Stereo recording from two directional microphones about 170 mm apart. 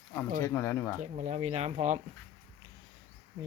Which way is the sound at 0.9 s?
45° right (ahead or behind).